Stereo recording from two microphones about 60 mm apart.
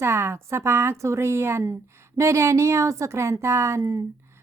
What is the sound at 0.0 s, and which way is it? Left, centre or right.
A woman's voice, right.